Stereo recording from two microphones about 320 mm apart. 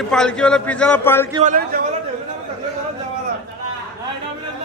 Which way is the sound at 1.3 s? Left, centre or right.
Right.